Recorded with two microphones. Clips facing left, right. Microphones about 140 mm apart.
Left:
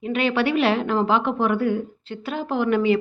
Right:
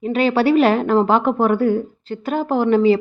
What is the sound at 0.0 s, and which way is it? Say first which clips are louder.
A woman's voice: right 5 dB; 40° right (ahead or behind).